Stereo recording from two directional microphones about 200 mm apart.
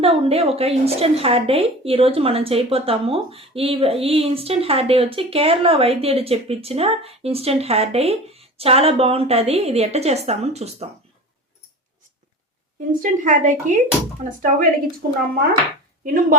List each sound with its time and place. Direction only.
0.0 s a woman's voice: 30° right (ahead or behind)
12.9 s a woman's voice: 40° right (ahead or behind)
16.0 s a woman's voice: 45° right (ahead or behind)